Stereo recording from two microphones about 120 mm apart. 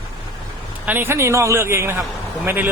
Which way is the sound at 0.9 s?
20° right (ahead or behind).